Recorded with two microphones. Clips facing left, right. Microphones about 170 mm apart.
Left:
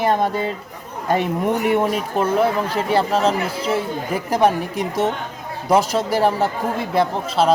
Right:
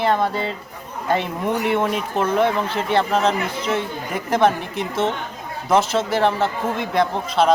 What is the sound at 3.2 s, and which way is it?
Speech, 30° left (ahead or behind).